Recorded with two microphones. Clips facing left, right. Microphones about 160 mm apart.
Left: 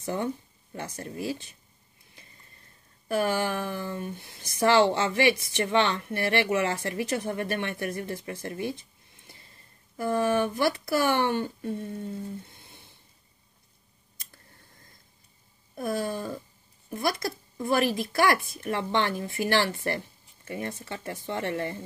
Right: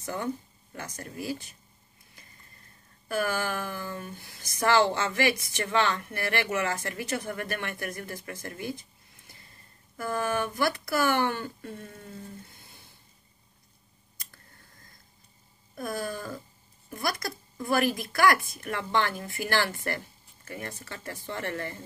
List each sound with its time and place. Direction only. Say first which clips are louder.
0.0 s speech: left 2 dB; 25° left (ahead or behind)
3.1 s speech: left 3 dB; 25° left (ahead or behind)
9.9 s speech: left 4 dB; 25° left (ahead or behind)
15.7 s speech: left 4 dB; 25° left (ahead or behind)